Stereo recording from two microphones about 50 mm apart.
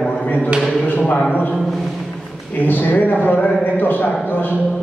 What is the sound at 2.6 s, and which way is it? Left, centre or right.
A man's voice, left.